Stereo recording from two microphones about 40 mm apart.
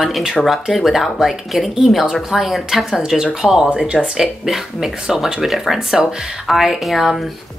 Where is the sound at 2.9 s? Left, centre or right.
Centre.